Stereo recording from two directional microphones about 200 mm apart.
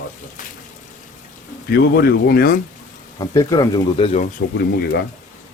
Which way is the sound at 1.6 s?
50° left (ahead or behind).